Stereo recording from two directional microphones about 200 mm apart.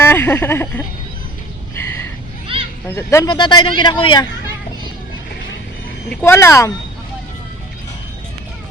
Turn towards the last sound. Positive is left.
turn(degrees=15)  # may be behind; listen again after turning